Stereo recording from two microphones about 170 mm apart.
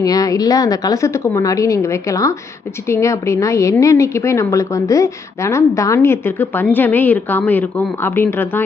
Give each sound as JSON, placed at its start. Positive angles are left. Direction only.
{"t": 0.0, "sound": "a woman's voice", "side_deg": 20}